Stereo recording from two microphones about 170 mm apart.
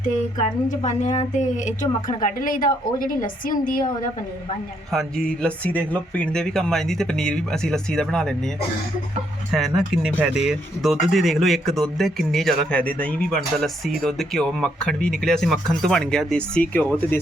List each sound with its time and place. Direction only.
0.7 s a woman's voice: 45° left (ahead or behind)
4.9 s speech: centre (ahead or behind)
9.5 s speech: centre (ahead or behind)